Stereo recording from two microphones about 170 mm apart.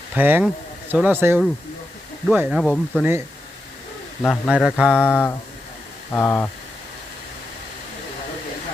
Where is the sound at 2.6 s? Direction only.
10° left (ahead or behind).